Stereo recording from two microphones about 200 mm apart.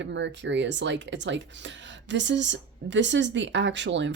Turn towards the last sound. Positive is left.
turn(degrees=-65)  # may be behind; listen again after turning